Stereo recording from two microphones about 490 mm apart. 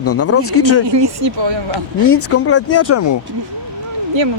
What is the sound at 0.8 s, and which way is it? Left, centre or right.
Speech, right.